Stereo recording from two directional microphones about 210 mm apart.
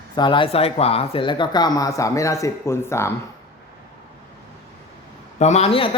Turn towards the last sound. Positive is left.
turn(degrees=25)  # may be behind; listen again after turning